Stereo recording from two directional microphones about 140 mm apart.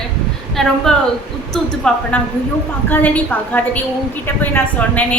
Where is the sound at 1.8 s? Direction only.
5° left (ahead or behind).